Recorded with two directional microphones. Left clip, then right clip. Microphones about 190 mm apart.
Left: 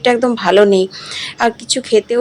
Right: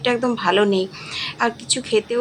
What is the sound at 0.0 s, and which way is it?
Speech, 25° left (ahead or behind).